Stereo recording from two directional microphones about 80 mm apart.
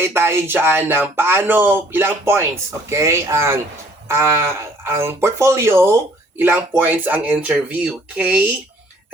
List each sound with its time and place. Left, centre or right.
0.0 s speech: right